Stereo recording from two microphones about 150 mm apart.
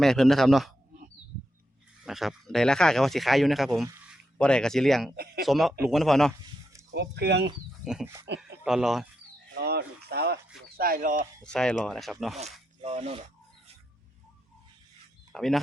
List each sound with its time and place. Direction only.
0.0 s speech: 5° left (ahead or behind)
2.0 s speech: centre (ahead or behind)
5.1 s speech: 90° right
5.5 s speech: centre (ahead or behind)
6.9 s speech: 90° right
7.8 s a sound: 5° right (ahead or behind)
8.4 s speech: 5° right (ahead or behind)
9.6 s speech: 90° right
10.8 s speech: 75° right (ahead or behind)
11.4 s speech: 5° left (ahead or behind)
12.8 s speech: 45° right (ahead or behind)
15.3 s speech: centre (ahead or behind)